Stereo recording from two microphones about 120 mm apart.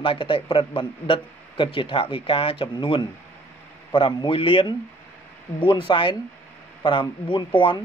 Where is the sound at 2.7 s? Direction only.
40° left (ahead or behind).